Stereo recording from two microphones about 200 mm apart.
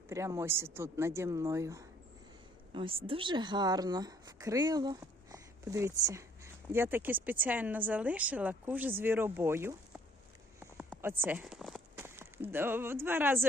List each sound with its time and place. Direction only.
0.1 s a woman's voice: 15° right (ahead or behind)
2.7 s a woman's voice: 25° right (ahead or behind)
11.0 s speech: 10° right (ahead or behind)
11.9 s speech: 10° right (ahead or behind)